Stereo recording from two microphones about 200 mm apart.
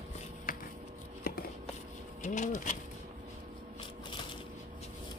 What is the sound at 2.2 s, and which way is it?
Speech, 35° left (ahead or behind).